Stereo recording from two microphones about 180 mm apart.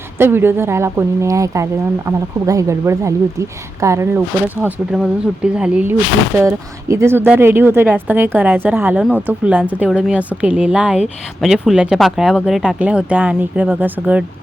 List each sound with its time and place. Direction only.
0.2 s speech: 10° right (ahead or behind)